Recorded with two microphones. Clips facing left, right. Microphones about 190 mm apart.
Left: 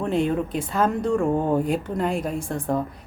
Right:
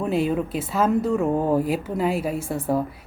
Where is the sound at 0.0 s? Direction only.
5° right (ahead or behind).